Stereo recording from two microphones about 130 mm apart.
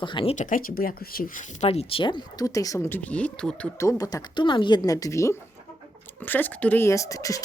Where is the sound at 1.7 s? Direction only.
50° left (ahead or behind); by 3.7 s 5° left (ahead or behind).